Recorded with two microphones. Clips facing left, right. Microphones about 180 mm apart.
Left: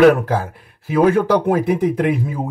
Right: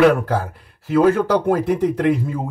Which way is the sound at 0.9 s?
10° left (ahead or behind).